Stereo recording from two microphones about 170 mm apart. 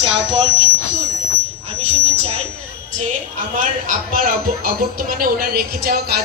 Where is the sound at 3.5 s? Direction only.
50° right (ahead or behind).